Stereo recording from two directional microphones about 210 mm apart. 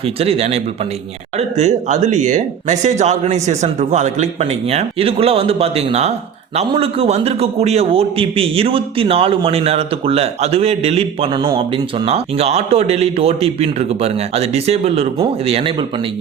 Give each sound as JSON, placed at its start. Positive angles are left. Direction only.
{"t": 0.0, "sound": "a man's voice", "side_deg": -30}